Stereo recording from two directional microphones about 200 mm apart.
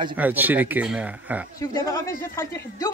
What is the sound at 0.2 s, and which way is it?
Speech, 10° right (ahead or behind).